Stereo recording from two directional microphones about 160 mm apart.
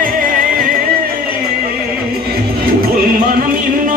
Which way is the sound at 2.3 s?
65° right (ahead or behind).